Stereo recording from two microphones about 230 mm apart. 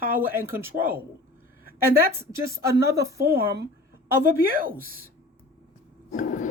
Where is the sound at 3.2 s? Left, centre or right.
Right.